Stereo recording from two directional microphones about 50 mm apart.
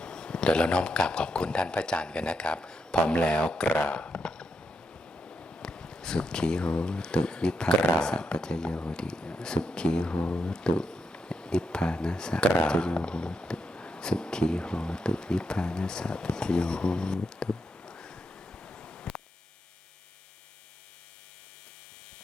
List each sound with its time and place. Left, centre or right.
0.0 s speech: centre
3.9 s a sound: left
5.6 s speech: centre
18.9 s hum: left